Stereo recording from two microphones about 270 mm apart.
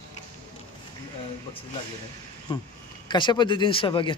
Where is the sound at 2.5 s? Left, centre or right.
Centre.